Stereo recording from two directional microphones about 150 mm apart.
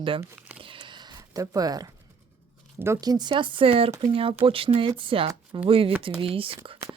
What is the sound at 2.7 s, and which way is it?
Speech, 15° right (ahead or behind).